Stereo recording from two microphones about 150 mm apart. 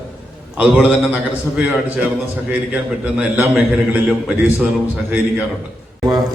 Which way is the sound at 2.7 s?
10° right (ahead or behind).